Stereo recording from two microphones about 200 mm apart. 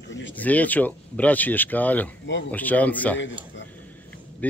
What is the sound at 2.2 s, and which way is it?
Speech, 65° left (ahead or behind).